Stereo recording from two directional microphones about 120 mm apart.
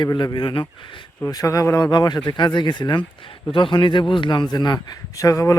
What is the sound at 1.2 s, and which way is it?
Speech, 30° left (ahead or behind).